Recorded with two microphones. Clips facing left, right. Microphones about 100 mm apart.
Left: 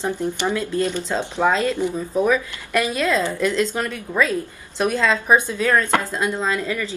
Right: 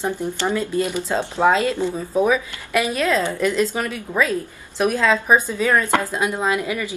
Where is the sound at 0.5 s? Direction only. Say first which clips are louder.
Right 2 dB; 15° right (ahead or behind).